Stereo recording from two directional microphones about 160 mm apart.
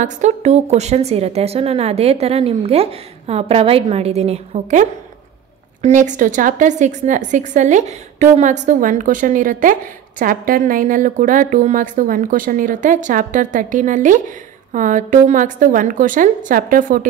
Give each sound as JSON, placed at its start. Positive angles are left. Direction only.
{"t": 0.0, "sound": "a woman's voice", "side_deg": -45}